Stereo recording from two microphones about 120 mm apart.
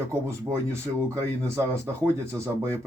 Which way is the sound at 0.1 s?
25° right (ahead or behind).